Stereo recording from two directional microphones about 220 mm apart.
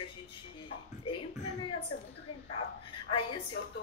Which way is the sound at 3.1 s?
25° left (ahead or behind).